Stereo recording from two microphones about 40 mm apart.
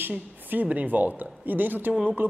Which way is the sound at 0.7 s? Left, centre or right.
Right.